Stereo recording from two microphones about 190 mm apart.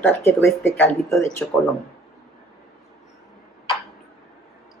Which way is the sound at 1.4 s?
Centre (ahead or behind).